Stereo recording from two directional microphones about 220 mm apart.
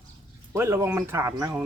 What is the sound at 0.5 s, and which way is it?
Speech, 10° right (ahead or behind).